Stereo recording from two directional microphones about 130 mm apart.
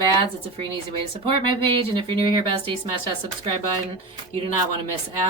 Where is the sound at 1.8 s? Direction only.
40° right (ahead or behind).